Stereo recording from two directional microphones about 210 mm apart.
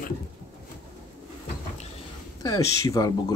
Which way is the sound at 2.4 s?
15° left (ahead or behind).